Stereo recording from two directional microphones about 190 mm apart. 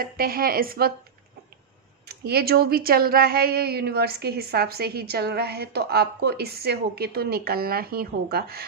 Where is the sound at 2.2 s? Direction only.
55° right (ahead or behind).